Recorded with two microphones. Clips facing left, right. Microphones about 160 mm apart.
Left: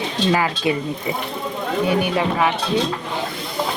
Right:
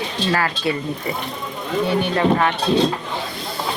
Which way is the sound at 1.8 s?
10° left (ahead or behind).